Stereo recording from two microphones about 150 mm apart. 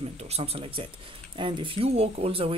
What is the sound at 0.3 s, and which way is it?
Speech, 40° right (ahead or behind).